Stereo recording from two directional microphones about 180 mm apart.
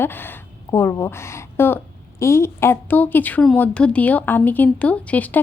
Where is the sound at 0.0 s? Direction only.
10° left (ahead or behind).